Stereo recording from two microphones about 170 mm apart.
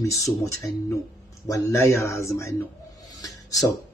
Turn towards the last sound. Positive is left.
turn(degrees=20)  # may be behind; listen again after turning